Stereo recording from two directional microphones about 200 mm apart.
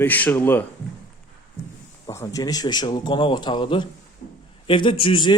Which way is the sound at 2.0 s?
15° left (ahead or behind).